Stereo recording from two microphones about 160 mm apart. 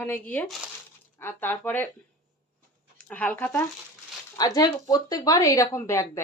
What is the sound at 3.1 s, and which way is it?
Speech, 10° left (ahead or behind).